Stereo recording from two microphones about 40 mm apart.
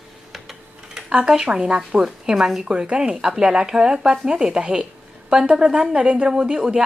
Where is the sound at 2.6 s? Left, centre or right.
Right.